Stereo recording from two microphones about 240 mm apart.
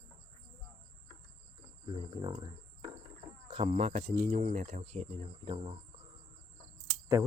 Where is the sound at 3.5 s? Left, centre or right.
Right.